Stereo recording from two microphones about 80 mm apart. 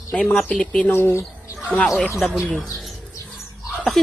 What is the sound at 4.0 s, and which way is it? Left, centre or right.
Speech, centre.